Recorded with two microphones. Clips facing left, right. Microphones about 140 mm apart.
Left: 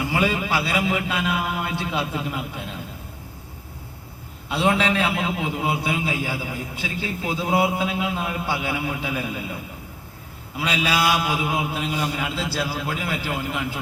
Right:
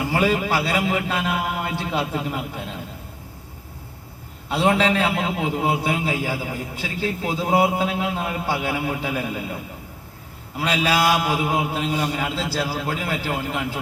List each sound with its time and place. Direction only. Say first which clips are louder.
0.1 s a man's voice: right 3 dB; 40° right (ahead or behind)
4.4 s a man's voice: right 2 dB; 40° right (ahead or behind)
10.6 s a man's voice: right 2 dB; 40° right (ahead or behind)